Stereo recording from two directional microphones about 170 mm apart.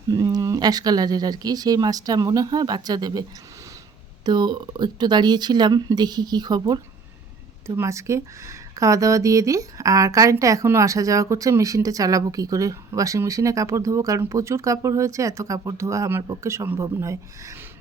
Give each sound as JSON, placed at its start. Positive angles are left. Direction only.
{"t": 0.1, "sound": "speech", "side_deg": -20}
{"t": 4.3, "sound": "speech", "side_deg": -25}
{"t": 7.8, "sound": "speech", "side_deg": -15}